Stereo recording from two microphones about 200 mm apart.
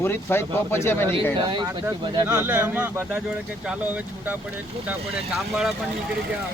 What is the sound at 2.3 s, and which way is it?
Speech, 5° right (ahead or behind).